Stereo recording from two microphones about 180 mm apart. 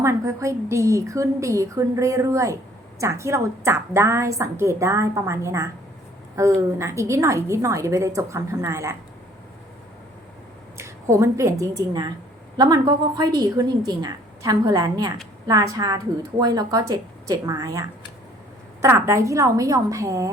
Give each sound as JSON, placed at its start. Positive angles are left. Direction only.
{"t": 0.0, "sound": "a woman's voice", "side_deg": -15}
{"t": 10.8, "sound": "a woman's voice", "side_deg": -15}